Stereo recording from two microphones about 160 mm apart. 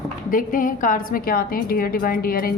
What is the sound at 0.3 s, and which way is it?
A woman's voice, 60° left (ahead or behind).